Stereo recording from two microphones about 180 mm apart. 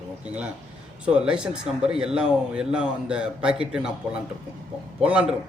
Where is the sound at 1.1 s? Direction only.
5° right (ahead or behind).